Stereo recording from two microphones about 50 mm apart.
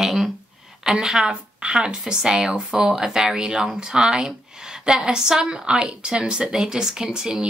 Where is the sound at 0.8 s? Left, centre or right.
Centre.